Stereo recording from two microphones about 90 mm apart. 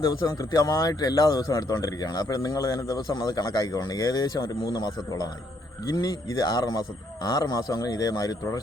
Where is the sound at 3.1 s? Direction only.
50° left (ahead or behind).